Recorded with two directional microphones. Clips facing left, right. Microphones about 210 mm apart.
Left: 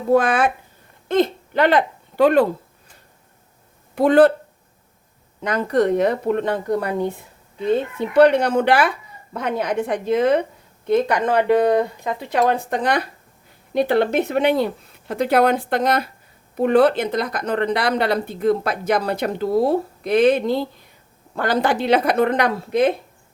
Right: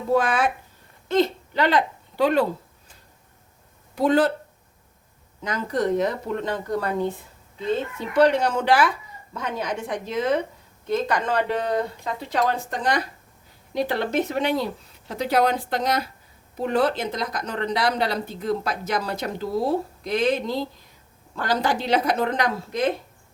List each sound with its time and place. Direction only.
0.1 s speech: 50° left (ahead or behind)
3.9 s speech: 55° left (ahead or behind)
5.4 s speech: 60° left (ahead or behind)